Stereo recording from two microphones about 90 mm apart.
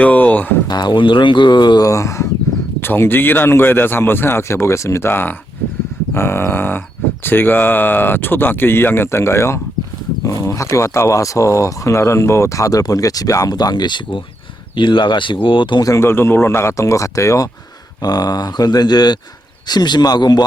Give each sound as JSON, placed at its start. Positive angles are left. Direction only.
{"t": 0.0, "sound": "a sound", "side_deg": 15}
{"t": 0.7, "sound": "speech", "side_deg": 55}
{"t": 1.8, "sound": "speech", "side_deg": 35}
{"t": 2.8, "sound": "speech", "side_deg": 25}
{"t": 15.8, "sound": "speech", "side_deg": 35}